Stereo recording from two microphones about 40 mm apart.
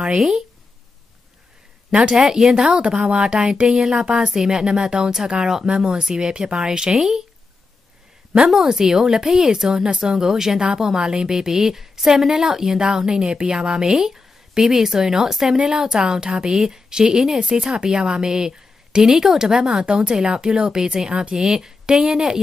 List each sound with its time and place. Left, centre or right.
2.0 s a woman's voice: centre
8.6 s a woman's voice: centre